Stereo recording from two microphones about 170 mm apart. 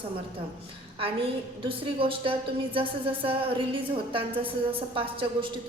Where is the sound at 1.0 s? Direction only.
35° right (ahead or behind).